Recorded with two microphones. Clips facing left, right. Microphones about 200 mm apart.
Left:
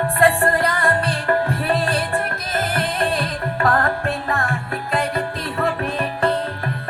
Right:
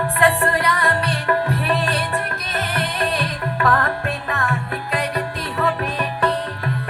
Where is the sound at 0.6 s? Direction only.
30° left (ahead or behind).